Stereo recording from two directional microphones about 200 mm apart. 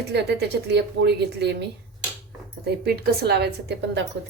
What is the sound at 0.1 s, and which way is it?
A woman's voice, 55° right (ahead or behind).